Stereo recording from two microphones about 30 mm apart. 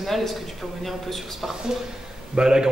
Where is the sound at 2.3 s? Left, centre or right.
Right.